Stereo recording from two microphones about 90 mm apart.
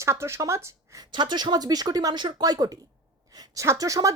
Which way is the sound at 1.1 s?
55° right (ahead or behind).